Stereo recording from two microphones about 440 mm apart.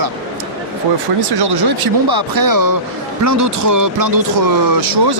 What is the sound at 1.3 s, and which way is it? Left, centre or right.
Speech, right.